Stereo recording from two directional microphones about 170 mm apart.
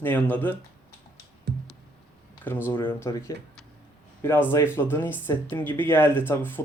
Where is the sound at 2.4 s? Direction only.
10° left (ahead or behind).